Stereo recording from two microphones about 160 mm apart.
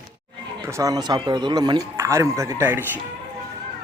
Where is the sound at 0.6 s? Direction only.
20° right (ahead or behind).